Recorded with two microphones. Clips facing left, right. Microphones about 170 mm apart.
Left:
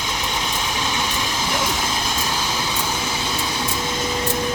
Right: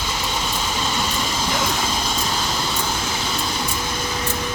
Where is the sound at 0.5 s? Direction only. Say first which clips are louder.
Even; 10° left (ahead or behind).